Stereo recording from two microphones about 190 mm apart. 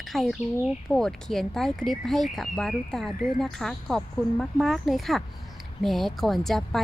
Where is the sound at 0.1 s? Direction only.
Centre (ahead or behind).